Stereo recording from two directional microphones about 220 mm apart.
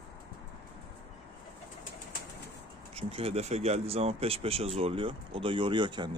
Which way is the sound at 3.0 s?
25° right (ahead or behind).